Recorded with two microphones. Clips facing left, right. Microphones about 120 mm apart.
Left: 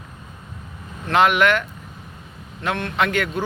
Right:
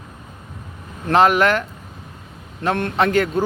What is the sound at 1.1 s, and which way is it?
Speech, 35° right (ahead or behind).